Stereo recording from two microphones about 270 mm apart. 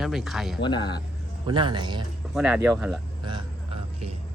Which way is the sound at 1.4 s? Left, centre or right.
Centre.